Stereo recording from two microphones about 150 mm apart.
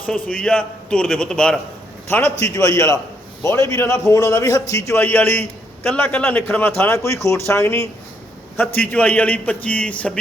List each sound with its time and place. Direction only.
0.0 s a man's voice: 5° left (ahead or behind)